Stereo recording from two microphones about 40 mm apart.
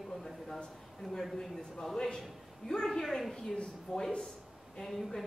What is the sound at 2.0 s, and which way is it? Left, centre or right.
A woman's voice, centre.